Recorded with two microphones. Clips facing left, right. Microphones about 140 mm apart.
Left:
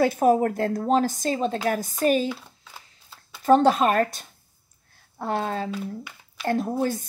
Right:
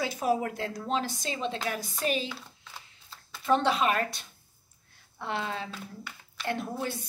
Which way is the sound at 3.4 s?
45° left (ahead or behind).